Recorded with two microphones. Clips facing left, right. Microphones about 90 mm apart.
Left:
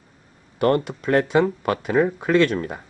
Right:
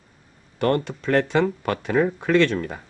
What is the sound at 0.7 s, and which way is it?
Speech, 10° left (ahead or behind).